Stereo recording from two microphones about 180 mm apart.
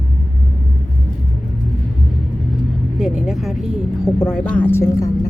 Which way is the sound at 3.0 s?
Centre (ahead or behind).